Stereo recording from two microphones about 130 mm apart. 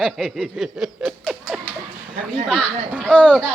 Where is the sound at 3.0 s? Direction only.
10° left (ahead or behind).